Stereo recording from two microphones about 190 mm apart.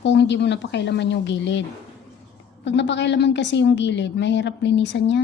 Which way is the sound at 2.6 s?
65° left (ahead or behind).